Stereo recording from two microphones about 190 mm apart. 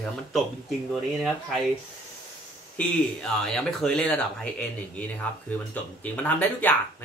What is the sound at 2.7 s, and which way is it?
Speech, 5° left (ahead or behind).